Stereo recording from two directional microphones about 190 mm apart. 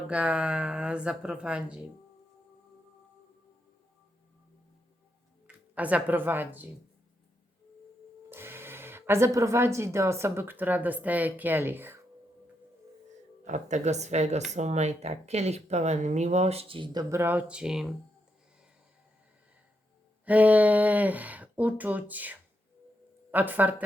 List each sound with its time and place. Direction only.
0.1 s speech: 5° right (ahead or behind)
5.7 s speech: 10° right (ahead or behind)
8.3 s speech: 10° right (ahead or behind)
13.4 s speech: 40° right (ahead or behind); by 17.9 s 5° right (ahead or behind)
20.2 s speech: 10° right (ahead or behind)